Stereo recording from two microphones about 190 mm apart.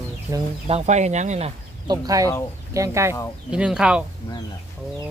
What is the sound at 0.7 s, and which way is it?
Speech, 35° right (ahead or behind).